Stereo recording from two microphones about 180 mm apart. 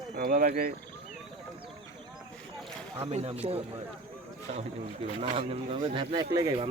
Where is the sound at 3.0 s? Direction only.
35° right (ahead or behind).